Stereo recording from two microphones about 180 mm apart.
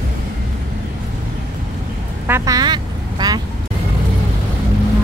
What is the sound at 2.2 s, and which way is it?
Quack, 15° right (ahead or behind).